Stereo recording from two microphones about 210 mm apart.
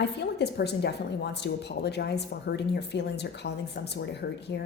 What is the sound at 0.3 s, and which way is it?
A woman's voice, 50° left (ahead or behind).